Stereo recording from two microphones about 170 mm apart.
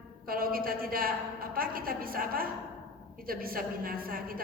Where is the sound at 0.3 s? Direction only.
60° right (ahead or behind).